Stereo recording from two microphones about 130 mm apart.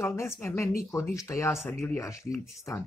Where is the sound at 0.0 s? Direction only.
20° left (ahead or behind).